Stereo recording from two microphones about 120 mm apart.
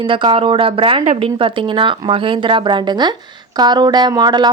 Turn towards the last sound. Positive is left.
turn(degrees=-35)  # may be behind; listen again after turning